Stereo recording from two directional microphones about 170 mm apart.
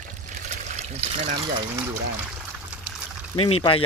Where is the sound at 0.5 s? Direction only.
40° right (ahead or behind).